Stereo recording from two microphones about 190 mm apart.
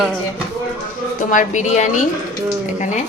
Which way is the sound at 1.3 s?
40° left (ahead or behind).